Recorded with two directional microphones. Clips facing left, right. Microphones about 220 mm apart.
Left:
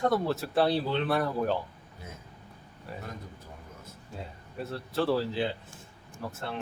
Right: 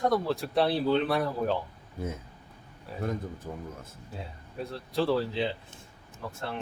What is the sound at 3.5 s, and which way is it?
Speech, 55° right (ahead or behind).